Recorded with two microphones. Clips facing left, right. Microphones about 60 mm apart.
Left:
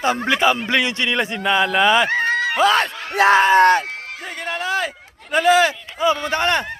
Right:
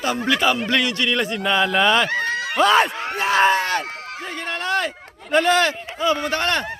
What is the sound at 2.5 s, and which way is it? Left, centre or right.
Speech, centre.